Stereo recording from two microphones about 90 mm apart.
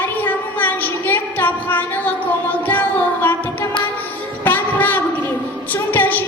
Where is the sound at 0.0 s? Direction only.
20° left (ahead or behind).